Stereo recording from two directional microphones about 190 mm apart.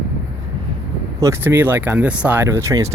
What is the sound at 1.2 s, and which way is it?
Speech, 15° right (ahead or behind).